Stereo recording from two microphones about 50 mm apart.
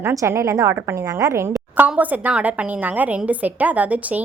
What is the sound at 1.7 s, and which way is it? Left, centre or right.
A woman's voice, right.